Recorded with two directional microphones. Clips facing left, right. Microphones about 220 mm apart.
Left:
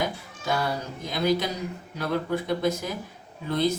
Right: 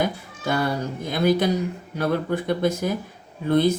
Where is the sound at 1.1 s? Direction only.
50° right (ahead or behind).